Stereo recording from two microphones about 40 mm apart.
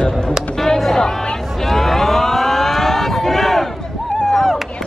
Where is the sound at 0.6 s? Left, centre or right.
Centre.